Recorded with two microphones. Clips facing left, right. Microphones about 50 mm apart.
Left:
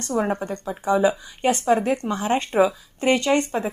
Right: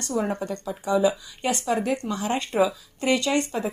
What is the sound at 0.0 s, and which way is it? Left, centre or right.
Speech, left.